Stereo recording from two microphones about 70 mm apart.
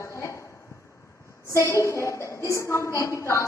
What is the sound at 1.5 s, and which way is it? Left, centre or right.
A woman's voice, left.